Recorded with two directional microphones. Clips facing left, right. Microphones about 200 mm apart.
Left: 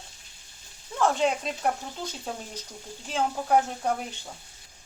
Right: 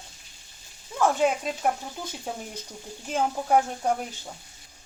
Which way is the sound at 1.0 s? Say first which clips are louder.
Right 1 dB; 5° right (ahead or behind).